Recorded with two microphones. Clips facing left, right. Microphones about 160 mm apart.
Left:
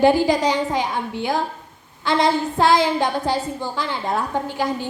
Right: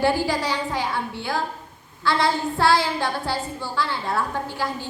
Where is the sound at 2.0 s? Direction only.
20° left (ahead or behind).